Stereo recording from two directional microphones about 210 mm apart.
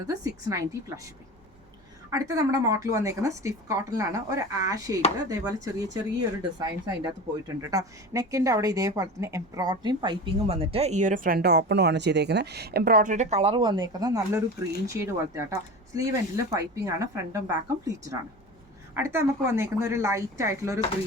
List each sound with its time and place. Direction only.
0.0 s speech: 15° right (ahead or behind)
2.0 s speech: 15° right (ahead or behind)